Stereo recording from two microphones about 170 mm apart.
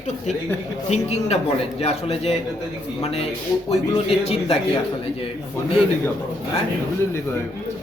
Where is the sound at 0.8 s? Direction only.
40° left (ahead or behind).